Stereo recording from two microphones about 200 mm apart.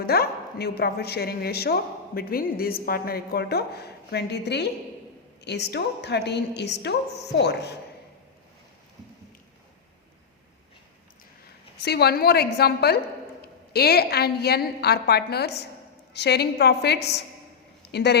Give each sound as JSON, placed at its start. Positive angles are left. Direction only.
{"t": 0.0, "sound": "a woman's voice", "side_deg": 50}
{"t": 11.8, "sound": "a woman's voice", "side_deg": 55}